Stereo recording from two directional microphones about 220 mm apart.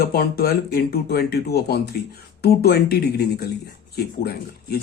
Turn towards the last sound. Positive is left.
turn(degrees=45)  # may be behind; listen again after turning